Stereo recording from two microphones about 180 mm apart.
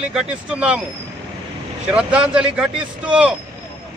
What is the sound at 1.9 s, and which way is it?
A man's voice, 5° right (ahead or behind).